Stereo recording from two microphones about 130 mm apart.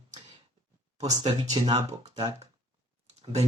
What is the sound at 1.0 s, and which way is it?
Speech, 30° right (ahead or behind).